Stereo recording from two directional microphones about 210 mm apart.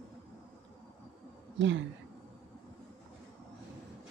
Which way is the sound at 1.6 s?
60° right (ahead or behind).